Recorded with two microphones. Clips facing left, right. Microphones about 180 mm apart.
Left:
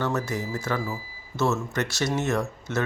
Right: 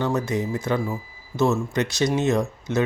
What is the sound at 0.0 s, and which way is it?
Speech, 15° right (ahead or behind).